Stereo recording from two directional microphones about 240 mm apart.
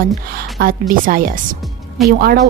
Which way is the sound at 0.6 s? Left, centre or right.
Right.